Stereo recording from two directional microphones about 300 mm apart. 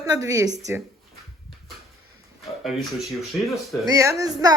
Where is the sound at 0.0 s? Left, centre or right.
Centre.